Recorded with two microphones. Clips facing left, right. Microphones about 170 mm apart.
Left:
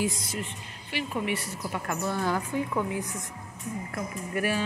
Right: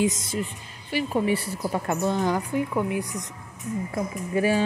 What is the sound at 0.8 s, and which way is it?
A woman's voice, 35° right (ahead or behind).